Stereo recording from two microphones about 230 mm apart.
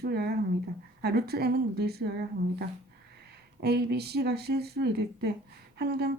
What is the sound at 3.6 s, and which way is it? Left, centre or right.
Speech, right.